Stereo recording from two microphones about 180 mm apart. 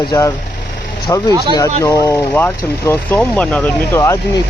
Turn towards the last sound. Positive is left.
turn(degrees=20)  # may be behind; listen again after turning